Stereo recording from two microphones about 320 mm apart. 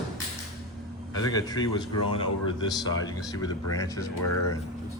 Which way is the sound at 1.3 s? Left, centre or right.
Centre.